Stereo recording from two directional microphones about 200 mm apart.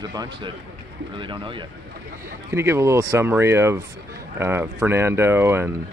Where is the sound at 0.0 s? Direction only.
20° right (ahead or behind).